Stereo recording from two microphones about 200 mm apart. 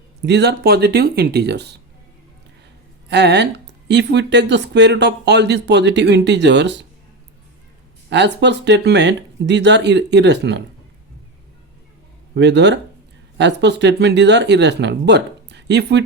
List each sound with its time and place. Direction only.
0.2 s speech: 60° right (ahead or behind)
3.1 s speech: 55° right (ahead or behind)
8.1 s speech: 60° right (ahead or behind)
12.3 s speech: 60° right (ahead or behind)